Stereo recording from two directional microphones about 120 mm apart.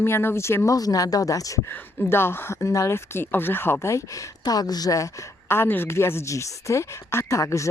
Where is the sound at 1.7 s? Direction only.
20° left (ahead or behind).